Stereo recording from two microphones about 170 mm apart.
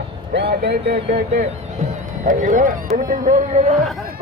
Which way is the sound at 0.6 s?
70° right (ahead or behind).